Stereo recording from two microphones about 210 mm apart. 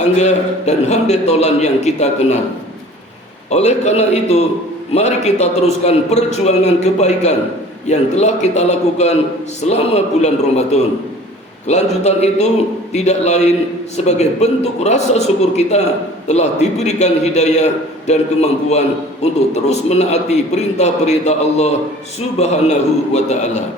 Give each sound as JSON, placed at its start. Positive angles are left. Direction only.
{"t": 0.0, "sound": "a man's voice", "side_deg": 35}
{"t": 3.5, "sound": "a man's voice", "side_deg": 30}